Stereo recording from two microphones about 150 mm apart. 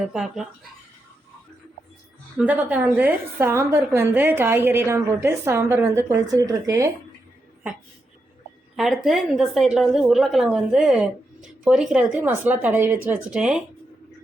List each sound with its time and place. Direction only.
0.0 s a woman's voice: 5° right (ahead or behind)
2.4 s a woman's voice: 10° right (ahead or behind)
8.7 s a woman's voice: centre (ahead or behind)